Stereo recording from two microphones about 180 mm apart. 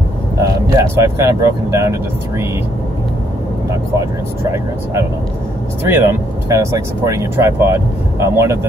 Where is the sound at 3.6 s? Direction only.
15° right (ahead or behind).